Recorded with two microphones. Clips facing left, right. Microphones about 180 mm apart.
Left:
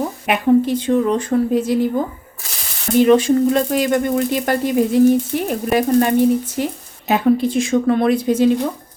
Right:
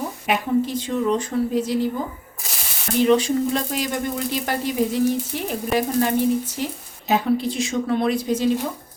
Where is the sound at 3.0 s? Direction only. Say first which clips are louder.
Left 5 dB; 50° left (ahead or behind).